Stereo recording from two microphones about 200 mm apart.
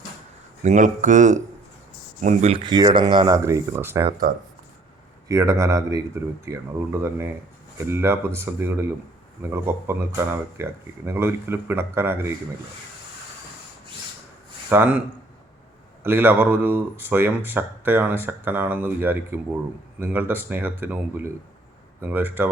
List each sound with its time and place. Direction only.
0.6 s speech: 40° right (ahead or behind); by 4.0 s 10° right (ahead or behind)
5.3 s speech: 15° right (ahead or behind)
14.7 s speech: 10° right (ahead or behind)
16.0 s speech: 10° right (ahead or behind)